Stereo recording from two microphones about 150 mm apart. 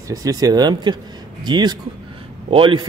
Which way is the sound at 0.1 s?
25° right (ahead or behind).